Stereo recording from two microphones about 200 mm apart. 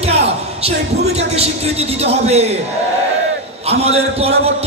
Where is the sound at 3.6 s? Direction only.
30° right (ahead or behind).